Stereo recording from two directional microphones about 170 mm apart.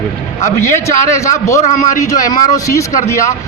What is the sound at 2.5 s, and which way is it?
Speech, 20° left (ahead or behind).